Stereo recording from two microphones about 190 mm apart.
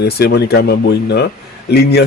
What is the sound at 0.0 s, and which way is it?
A man's voice, 55° left (ahead or behind).